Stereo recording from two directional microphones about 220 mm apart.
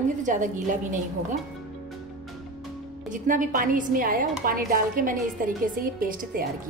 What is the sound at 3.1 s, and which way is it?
Speech, 35° right (ahead or behind).